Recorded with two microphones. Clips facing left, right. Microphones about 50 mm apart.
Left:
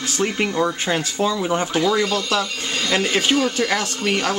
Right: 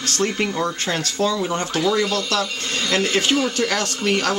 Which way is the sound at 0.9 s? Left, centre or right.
Centre.